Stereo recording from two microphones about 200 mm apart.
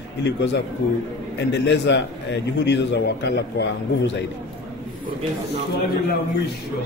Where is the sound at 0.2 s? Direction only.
60° left (ahead or behind).